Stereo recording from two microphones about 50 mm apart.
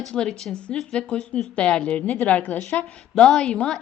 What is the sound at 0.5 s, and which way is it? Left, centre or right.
A woman's voice, left.